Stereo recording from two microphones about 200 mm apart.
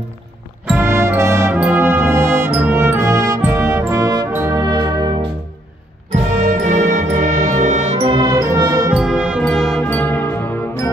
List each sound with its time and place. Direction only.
0.7 s music: 10° right (ahead or behind)
6.1 s music: 35° right (ahead or behind)
8.0 s music: 20° right (ahead or behind)
8.9 s music: 5° right (ahead or behind)